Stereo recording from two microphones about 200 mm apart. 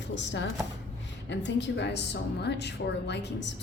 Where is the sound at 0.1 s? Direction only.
65° left (ahead or behind).